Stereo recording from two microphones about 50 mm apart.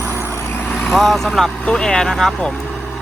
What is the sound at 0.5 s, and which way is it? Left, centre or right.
Vehicle, left.